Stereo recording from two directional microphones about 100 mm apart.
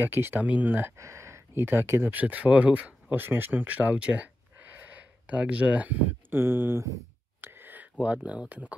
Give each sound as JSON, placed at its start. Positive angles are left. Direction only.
{"t": 0.0, "sound": "speech", "side_deg": -20}
{"t": 0.9, "sound": "speech", "side_deg": -30}